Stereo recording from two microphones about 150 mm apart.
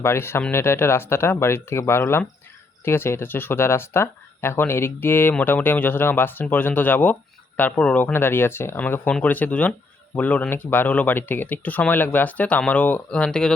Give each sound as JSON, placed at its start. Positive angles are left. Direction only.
{"t": 0.0, "sound": "speech", "side_deg": 15}